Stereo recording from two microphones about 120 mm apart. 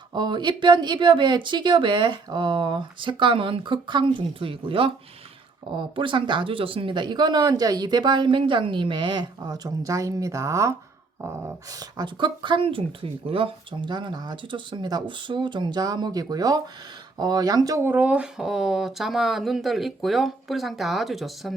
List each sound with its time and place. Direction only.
0.1 s speech: 40° right (ahead or behind)
17.8 s speech: 15° right (ahead or behind)